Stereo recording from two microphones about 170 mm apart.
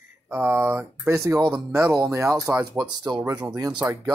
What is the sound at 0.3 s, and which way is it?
Speech, 10° right (ahead or behind).